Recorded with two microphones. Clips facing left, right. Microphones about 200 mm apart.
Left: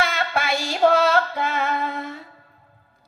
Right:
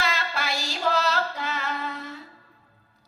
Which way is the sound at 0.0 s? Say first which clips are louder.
Left 5 dB; 55° left (ahead or behind).